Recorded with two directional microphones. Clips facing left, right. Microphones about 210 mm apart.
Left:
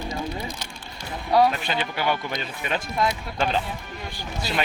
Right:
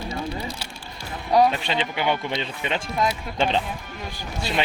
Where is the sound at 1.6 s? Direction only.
25° right (ahead or behind).